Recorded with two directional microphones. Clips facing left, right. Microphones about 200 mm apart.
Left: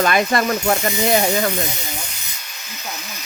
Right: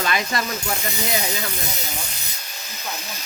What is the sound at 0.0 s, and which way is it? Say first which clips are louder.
Speech: left 7 dB; 55° left (ahead or behind).